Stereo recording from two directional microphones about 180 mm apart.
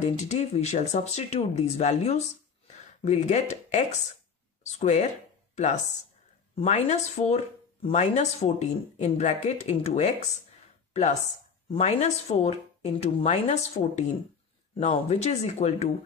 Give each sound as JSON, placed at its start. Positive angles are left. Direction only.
{"t": 0.2, "sound": "speech", "side_deg": 35}
{"t": 6.5, "sound": "speech", "side_deg": 40}
{"t": 10.9, "sound": "a sound", "side_deg": 40}
{"t": 11.7, "sound": "speech", "side_deg": 35}